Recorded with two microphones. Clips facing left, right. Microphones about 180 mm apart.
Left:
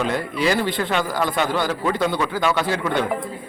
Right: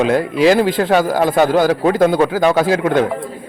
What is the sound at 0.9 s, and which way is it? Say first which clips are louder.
A man's voice: right 8 dB; 45° right (ahead or behind).